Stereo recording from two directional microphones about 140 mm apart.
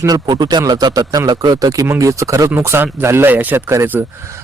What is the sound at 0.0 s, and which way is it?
A man's voice, 25° right (ahead or behind).